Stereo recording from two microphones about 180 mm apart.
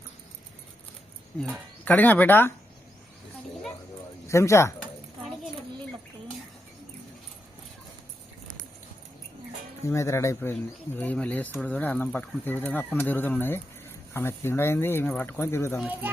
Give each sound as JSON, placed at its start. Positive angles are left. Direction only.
{"t": 1.4, "sound": "speech", "side_deg": 0}
{"t": 4.3, "sound": "speech", "side_deg": 15}
{"t": 9.8, "sound": "speech", "side_deg": 15}
{"t": 15.8, "sound": "speech", "side_deg": -10}